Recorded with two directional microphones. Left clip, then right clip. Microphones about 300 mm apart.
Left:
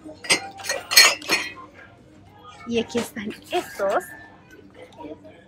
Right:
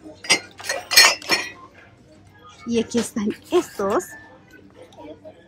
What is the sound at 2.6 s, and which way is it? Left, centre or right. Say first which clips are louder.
Speech: right 2 dB; centre.